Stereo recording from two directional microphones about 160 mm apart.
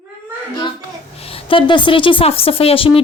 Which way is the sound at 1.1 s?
35° left (ahead or behind).